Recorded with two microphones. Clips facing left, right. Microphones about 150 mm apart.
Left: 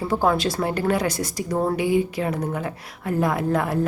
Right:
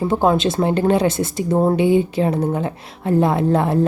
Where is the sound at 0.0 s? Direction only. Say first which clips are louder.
Right 4 dB; 20° right (ahead or behind).